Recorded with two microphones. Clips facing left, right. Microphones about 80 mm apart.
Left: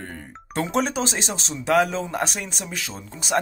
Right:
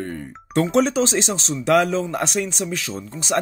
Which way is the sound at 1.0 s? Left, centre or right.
Left.